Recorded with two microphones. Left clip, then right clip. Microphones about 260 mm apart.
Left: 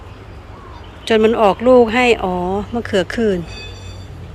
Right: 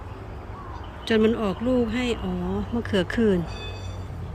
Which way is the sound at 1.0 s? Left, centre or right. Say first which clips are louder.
Left 10 dB; centre.